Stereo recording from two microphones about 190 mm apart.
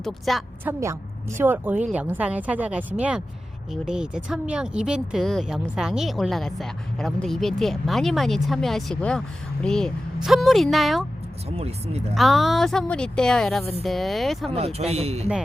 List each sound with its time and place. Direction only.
0.0 s speech: centre (ahead or behind)
0.6 s speech: 15° right (ahead or behind)
11.4 s speech: 35° right (ahead or behind)
12.1 s speech: centre (ahead or behind)
14.5 s speech: 35° right (ahead or behind)